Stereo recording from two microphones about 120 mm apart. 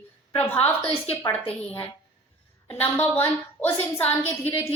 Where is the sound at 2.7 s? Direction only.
15° left (ahead or behind).